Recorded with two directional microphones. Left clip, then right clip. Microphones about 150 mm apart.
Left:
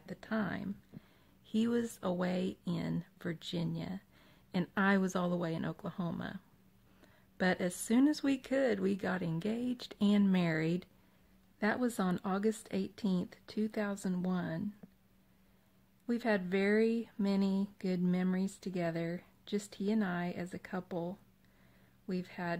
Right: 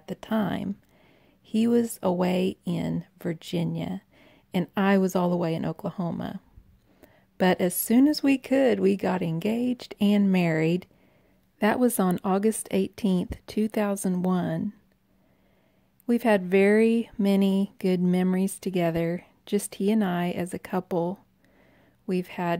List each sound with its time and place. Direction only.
0.0 s speech: 45° right (ahead or behind)
16.1 s speech: 45° right (ahead or behind)